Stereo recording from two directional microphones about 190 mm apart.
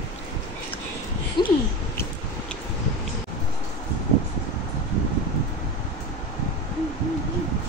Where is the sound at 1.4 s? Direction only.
25° left (ahead or behind).